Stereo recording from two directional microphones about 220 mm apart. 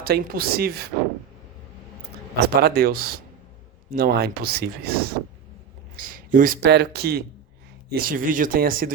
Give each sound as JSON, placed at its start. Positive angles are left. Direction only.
{"t": 0.0, "sound": "speech", "side_deg": -45}
{"t": 2.6, "sound": "speech", "side_deg": -45}